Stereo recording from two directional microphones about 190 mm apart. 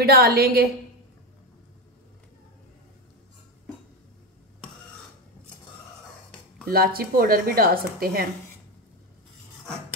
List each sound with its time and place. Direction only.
0.0 s a woman's voice: 55° right (ahead or behind)
6.7 s a woman's voice: 50° right (ahead or behind)